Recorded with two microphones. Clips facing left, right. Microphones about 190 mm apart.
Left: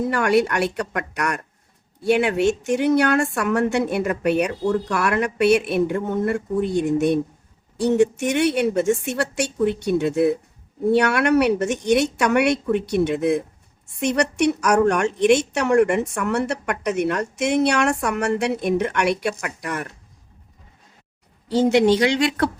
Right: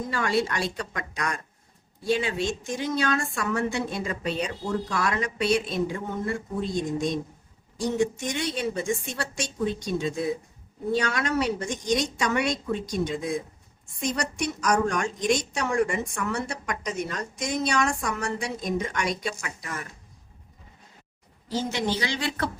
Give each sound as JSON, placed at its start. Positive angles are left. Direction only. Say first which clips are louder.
{"t": 0.0, "sound": "a woman's voice", "louder": "left 7 dB", "side_deg": 70}
{"t": 21.5, "sound": "speech", "louder": "left 12 dB", "side_deg": 65}